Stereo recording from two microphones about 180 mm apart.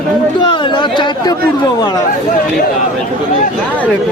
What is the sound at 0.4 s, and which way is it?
Chatter, 25° left (ahead or behind).